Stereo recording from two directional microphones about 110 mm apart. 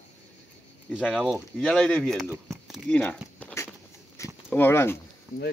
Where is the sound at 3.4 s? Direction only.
15° left (ahead or behind).